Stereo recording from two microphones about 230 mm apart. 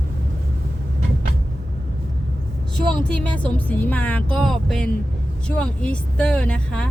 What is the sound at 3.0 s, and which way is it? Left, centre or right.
A woman's voice, centre.